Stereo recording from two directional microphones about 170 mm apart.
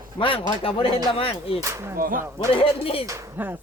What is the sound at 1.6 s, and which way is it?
Speech, 15° right (ahead or behind).